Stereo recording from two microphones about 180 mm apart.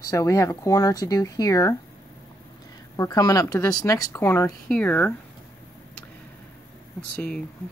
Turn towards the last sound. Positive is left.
turn(degrees=5)  # may be behind; listen again after turning